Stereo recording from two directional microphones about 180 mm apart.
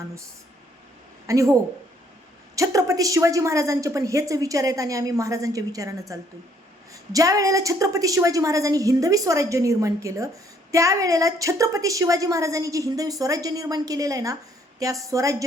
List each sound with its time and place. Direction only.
1.3 s a woman's voice: 15° right (ahead or behind)
2.6 s a woman's voice: 20° right (ahead or behind)